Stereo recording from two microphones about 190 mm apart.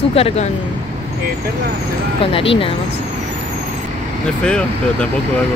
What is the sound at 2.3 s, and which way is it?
Speech, 30° left (ahead or behind).